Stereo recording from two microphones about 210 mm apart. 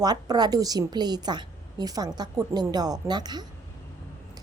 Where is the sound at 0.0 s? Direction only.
20° right (ahead or behind).